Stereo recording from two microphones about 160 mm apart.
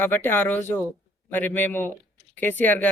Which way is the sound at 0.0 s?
15° left (ahead or behind).